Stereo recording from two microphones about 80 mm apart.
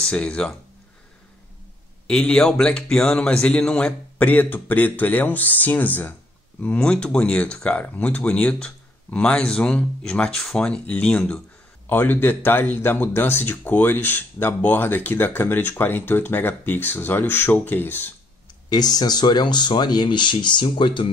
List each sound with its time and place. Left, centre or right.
0.0 s speech: centre
2.0 s speech: centre
4.2 s speech: left
11.9 s speech: left
18.7 s speech: left